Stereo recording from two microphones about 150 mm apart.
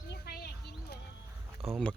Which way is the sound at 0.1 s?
90° left.